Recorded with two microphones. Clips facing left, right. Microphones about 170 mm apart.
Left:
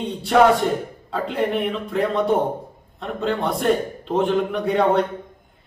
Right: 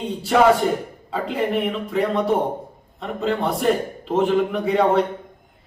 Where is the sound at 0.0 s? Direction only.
Centre (ahead or behind).